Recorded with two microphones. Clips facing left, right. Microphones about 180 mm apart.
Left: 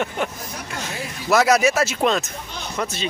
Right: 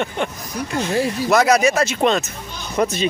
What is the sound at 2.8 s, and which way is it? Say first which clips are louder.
Speech: right 8 dB; 15° right (ahead or behind).